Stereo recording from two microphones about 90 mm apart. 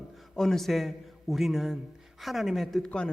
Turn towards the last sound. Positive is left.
turn(degrees=10)  # may be behind; listen again after turning